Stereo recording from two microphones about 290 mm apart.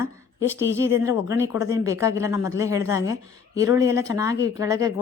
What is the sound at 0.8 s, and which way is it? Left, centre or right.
Speech, centre.